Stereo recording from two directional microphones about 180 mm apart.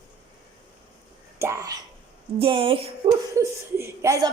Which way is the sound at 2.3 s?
30° right (ahead or behind).